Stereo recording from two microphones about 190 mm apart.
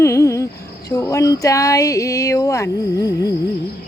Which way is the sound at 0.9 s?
15° left (ahead or behind).